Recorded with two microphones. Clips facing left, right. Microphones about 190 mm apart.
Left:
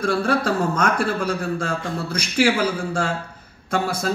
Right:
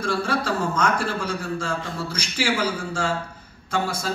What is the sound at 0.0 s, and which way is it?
A man's voice, 55° left (ahead or behind).